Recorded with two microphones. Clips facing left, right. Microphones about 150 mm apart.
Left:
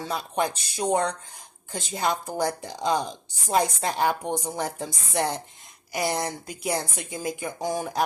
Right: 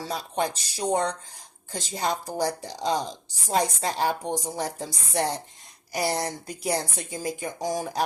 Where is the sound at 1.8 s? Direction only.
35° right (ahead or behind).